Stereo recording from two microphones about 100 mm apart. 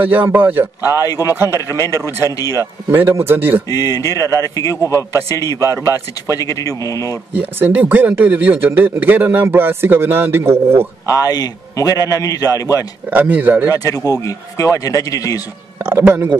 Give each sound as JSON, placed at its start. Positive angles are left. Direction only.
{"t": 0.0, "sound": "a man's voice", "side_deg": -20}
{"t": 1.0, "sound": "a man's voice", "side_deg": 35}
{"t": 1.3, "sound": "speech", "side_deg": -25}
{"t": 3.6, "sound": "a man's voice", "side_deg": 40}
{"t": 5.6, "sound": "speech", "side_deg": -30}
{"t": 6.3, "sound": "a man's voice", "side_deg": 35}
{"t": 7.3, "sound": "speech", "side_deg": -20}
{"t": 11.1, "sound": "a man's voice", "side_deg": 40}
{"t": 13.1, "sound": "a man's voice", "side_deg": -15}
{"t": 13.7, "sound": "a man's voice", "side_deg": 35}
{"t": 16.0, "sound": "speech", "side_deg": -20}